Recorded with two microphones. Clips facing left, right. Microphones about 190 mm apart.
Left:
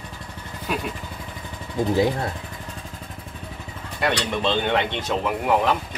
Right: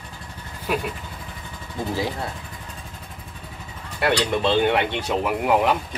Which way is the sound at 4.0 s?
10° right (ahead or behind).